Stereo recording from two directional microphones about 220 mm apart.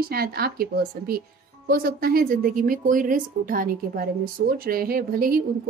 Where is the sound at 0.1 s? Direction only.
45° right (ahead or behind).